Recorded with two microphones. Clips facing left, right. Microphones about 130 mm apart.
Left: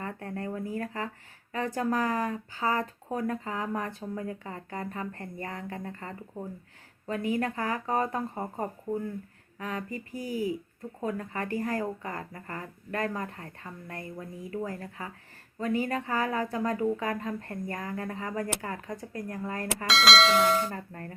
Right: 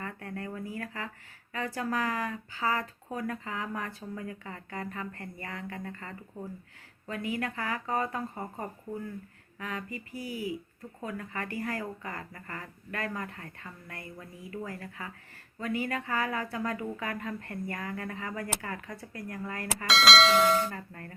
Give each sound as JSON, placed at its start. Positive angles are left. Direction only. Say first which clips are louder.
{"t": 0.0, "sound": "speech", "louder": "left 3 dB", "side_deg": 30}
{"t": 11.0, "sound": "speech", "louder": "left 4 dB", "side_deg": 30}
{"t": 19.9, "sound": "speech", "louder": "even", "side_deg": 0}
{"t": 20.7, "sound": "speech", "louder": "left 3 dB", "side_deg": 30}